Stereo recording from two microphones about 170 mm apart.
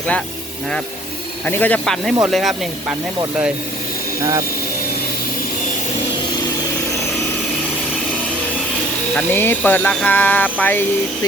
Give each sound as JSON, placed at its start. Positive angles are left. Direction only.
{"t": 1.5, "sound": "speech", "side_deg": 10}
{"t": 4.2, "sound": "speech", "side_deg": -20}
{"t": 9.1, "sound": "speech", "side_deg": 10}